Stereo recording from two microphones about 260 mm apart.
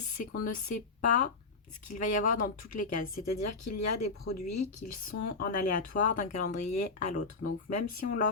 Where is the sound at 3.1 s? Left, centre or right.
Left.